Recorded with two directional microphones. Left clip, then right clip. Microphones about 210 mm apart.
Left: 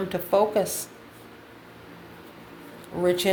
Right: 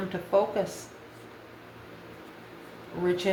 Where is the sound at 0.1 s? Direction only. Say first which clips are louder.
Left 4 dB; 50° left (ahead or behind).